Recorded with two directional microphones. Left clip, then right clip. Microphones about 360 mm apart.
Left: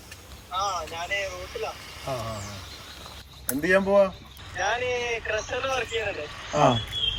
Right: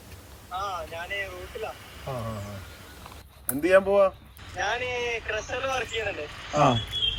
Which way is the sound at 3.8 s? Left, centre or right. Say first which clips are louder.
Left 1 dB; left.